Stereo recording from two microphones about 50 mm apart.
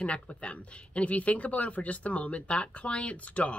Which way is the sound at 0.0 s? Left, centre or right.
Left.